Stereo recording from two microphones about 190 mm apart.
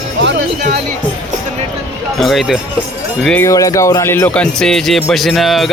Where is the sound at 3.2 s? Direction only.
10° left (ahead or behind).